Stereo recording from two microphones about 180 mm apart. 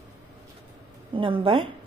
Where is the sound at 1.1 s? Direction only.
30° right (ahead or behind).